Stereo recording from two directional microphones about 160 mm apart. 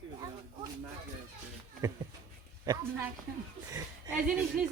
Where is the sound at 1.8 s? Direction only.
20° right (ahead or behind).